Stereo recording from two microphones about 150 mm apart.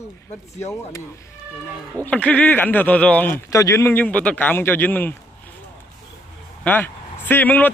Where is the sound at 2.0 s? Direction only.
10° left (ahead or behind).